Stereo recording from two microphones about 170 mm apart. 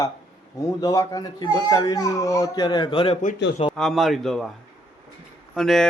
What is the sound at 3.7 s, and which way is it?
Speech, centre (ahead or behind).